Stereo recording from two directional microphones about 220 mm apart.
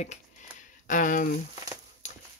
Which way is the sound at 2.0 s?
35° left (ahead or behind).